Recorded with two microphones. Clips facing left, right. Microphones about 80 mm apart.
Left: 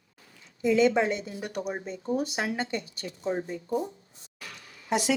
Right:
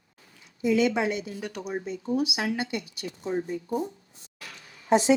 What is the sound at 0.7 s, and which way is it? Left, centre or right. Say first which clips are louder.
Speech: left 1 dB; left.